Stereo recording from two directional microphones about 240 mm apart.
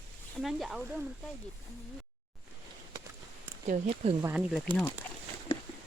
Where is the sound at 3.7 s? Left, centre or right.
Right.